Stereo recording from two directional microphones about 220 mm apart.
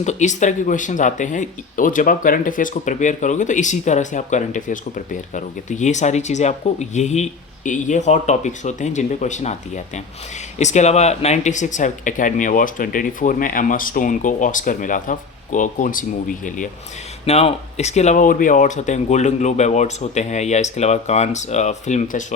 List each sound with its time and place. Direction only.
0.0 s speech: 30° left (ahead or behind)
17.2 s speech: 30° left (ahead or behind)